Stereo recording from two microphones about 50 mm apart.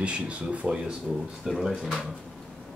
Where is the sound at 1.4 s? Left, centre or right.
Centre.